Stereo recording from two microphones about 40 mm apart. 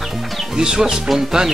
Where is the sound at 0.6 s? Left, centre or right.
Centre.